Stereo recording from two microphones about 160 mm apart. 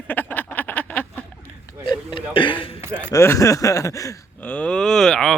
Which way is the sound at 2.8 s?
10° right (ahead or behind).